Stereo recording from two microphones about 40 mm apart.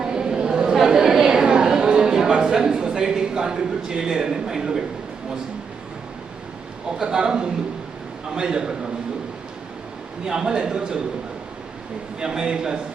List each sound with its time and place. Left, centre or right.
0.0 s chatter: centre
0.9 s a sound: centre
7.0 s a man's voice: centre
10.2 s a man's voice: centre
12.2 s a man's voice: centre